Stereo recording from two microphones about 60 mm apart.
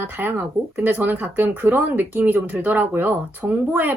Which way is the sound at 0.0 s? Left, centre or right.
Right.